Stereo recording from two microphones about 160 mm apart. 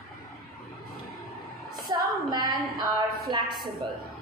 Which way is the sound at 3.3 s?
30° right (ahead or behind).